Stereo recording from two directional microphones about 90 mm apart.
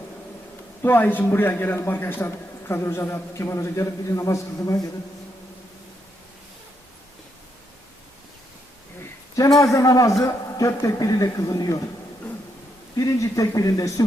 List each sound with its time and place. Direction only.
0.8 s a man's voice: 25° left (ahead or behind); by 4.9 s 40° left (ahead or behind)
9.6 s a man's voice: 40° left (ahead or behind)
13.0 s a man's voice: 35° left (ahead or behind)